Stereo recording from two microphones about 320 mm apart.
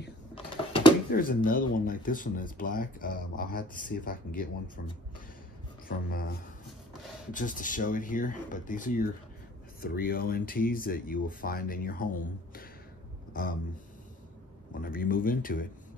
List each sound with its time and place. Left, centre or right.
0.3 s a sound: centre
1.1 s speech: left
7.3 s speech: left
14.7 s speech: left